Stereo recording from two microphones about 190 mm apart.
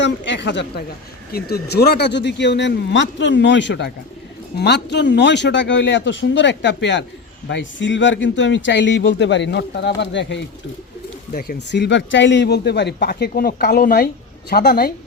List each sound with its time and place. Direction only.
0.0 s speech: 70° left (ahead or behind)
1.3 s speech: 55° left (ahead or behind); by 10.4 s 70° left (ahead or behind)
11.3 s speech: 55° left (ahead or behind)